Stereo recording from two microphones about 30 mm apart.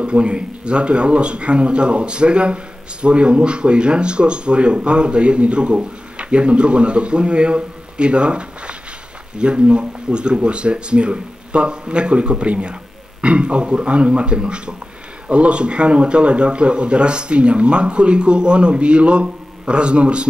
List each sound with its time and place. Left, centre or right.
0.0 s speech: right